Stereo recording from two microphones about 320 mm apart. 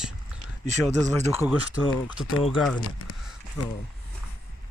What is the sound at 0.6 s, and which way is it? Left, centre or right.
Speech, right.